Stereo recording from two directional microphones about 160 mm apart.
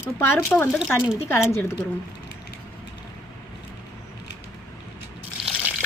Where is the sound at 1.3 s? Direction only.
15° left (ahead or behind).